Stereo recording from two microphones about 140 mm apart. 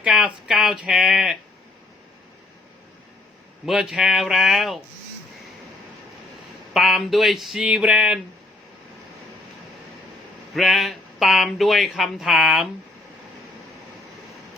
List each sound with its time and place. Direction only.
0.0 s speech: 5° right (ahead or behind)
3.7 s speech: 5° right (ahead or behind)
6.7 s speech: centre (ahead or behind)
10.5 s speech: centre (ahead or behind)